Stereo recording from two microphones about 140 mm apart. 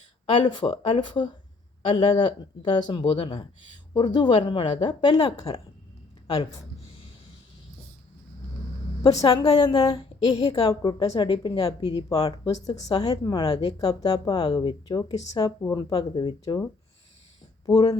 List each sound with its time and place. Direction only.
0.3 s a woman's voice: 35° left (ahead or behind)
9.0 s speech: 25° left (ahead or behind)
17.7 s speech: 25° left (ahead or behind)